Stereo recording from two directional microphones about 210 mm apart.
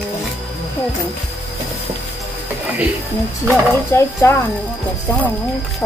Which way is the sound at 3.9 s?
10° left (ahead or behind).